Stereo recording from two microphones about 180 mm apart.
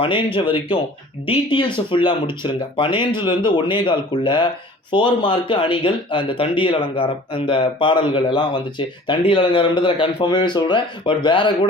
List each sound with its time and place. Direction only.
1.3 s speech: 25° left (ahead or behind)